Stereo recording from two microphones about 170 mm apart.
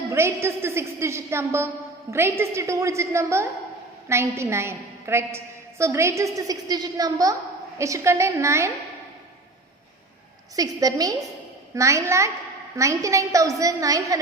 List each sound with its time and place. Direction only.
0.1 s a woman's voice: 15° right (ahead or behind)
10.5 s a woman's voice: 20° right (ahead or behind)